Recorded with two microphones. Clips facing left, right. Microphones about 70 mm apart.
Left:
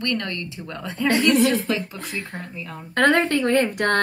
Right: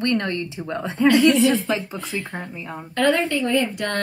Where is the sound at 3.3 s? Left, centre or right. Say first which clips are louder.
Left 2 dB; left.